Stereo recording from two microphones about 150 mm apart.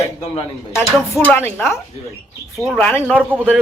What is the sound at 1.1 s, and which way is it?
A man's voice, 10° left (ahead or behind).